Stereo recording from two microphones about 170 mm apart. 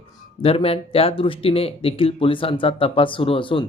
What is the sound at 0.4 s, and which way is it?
Speech, 35° left (ahead or behind).